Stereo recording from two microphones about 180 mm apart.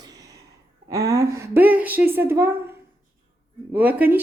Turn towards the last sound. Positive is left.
turn(degrees=-10)  # may be behind; listen again after turning